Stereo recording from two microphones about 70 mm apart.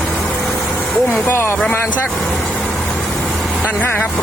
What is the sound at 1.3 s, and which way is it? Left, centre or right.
Speech, left.